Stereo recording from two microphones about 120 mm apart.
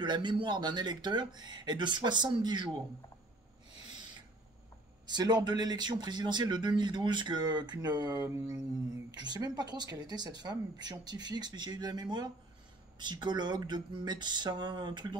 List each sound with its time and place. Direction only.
0.0 s speech: 40° right (ahead or behind)
5.0 s speech: 35° right (ahead or behind)